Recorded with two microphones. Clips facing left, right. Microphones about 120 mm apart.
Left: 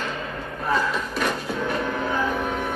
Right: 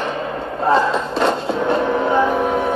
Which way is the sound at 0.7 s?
90° right.